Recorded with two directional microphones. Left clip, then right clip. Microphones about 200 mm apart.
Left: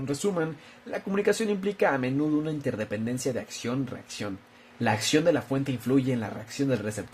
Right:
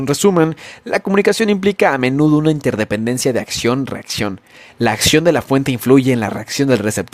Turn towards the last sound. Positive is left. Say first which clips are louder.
# right 13 dB
turn(degrees=-50)  # may be behind; listen again after turning